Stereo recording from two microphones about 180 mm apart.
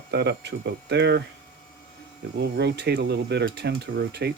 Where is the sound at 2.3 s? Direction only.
70° right (ahead or behind).